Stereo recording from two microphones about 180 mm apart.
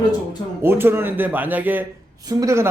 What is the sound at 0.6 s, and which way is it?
Speech, 10° right (ahead or behind).